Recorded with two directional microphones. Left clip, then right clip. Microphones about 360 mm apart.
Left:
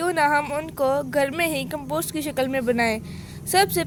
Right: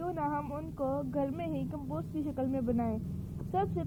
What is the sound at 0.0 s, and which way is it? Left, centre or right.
A woman's voice, left.